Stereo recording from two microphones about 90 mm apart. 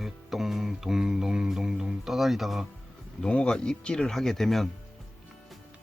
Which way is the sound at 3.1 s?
10° left (ahead or behind).